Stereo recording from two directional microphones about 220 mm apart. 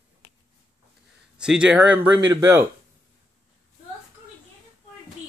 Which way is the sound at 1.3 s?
5° right (ahead or behind).